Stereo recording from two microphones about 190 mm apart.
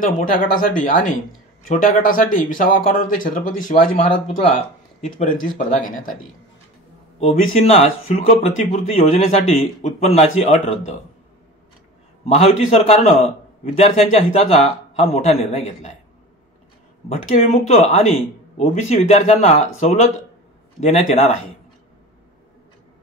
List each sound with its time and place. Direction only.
0.0 s speech: 45° left (ahead or behind)
7.2 s a man's voice: 35° left (ahead or behind)
12.3 s a man's voice: 35° left (ahead or behind)
17.1 s a man's voice: 35° left (ahead or behind)